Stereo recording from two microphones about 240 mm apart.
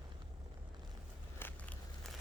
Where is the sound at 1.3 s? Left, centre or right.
Centre.